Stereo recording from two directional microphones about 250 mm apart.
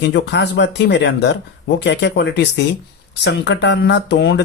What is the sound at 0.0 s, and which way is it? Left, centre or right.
Speech, left.